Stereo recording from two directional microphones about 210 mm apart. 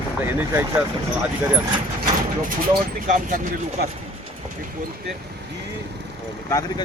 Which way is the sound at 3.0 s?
40° right (ahead or behind).